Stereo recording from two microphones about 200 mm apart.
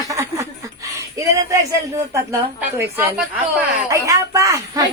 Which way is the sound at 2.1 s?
15° right (ahead or behind).